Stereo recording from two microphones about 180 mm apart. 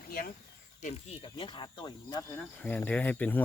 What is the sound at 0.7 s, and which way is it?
Speech, 40° left (ahead or behind).